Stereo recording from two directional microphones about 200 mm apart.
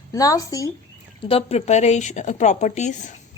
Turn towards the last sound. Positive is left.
turn(degrees=35)  # may be behind; listen again after turning